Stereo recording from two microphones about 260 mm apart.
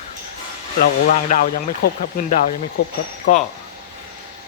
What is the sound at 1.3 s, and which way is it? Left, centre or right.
Speech, left.